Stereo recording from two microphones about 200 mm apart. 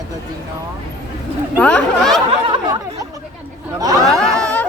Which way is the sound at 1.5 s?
5° left (ahead or behind).